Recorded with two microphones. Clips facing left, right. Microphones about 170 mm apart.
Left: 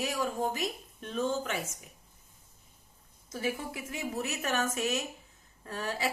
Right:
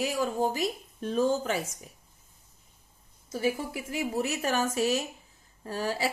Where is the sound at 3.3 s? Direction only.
30° right (ahead or behind).